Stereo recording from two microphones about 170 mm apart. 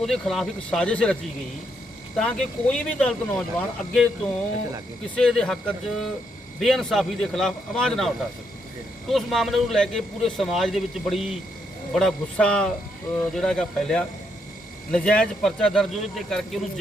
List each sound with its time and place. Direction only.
0.0 s speech: centre (ahead or behind)
2.1 s speech: 5° left (ahead or behind)
5.1 s speech: 5° left (ahead or behind)